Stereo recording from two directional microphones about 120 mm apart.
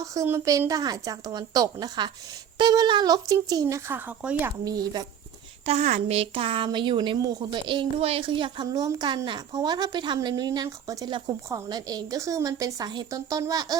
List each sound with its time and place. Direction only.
0.0 s a woman's voice: 25° right (ahead or behind)
4.4 s speech: 30° right (ahead or behind)
5.6 s a woman's voice: 65° right (ahead or behind); by 8.6 s 45° right (ahead or behind)
8.7 s a woman's voice: 35° right (ahead or behind)